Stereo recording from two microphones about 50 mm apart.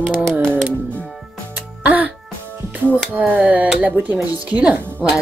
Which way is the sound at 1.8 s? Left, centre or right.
Right.